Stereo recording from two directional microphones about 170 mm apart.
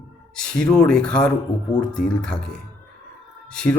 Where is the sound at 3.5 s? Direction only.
5° left (ahead or behind).